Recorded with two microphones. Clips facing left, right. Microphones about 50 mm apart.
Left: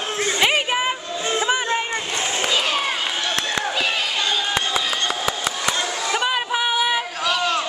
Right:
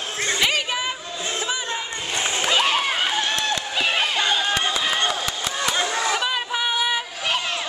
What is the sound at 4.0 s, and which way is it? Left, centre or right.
Run, right.